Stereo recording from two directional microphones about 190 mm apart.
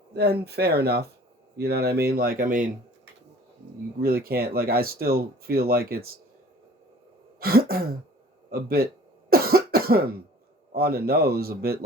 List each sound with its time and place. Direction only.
0.1 s speech: 60° right (ahead or behind)
4.0 s speech: 55° right (ahead or behind)
7.3 s a sound: 55° right (ahead or behind)
8.4 s speech: 55° right (ahead or behind)
9.3 s cough: 55° right (ahead or behind)
10.8 s speech: 55° right (ahead or behind)